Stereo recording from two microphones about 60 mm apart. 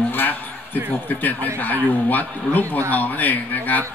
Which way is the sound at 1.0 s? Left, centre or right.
Left.